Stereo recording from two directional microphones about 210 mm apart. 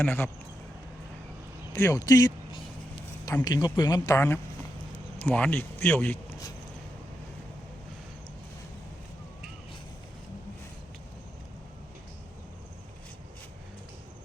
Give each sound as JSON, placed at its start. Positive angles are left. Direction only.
{"t": 0.0, "sound": "speech", "side_deg": 10}
{"t": 1.7, "sound": "speech", "side_deg": 15}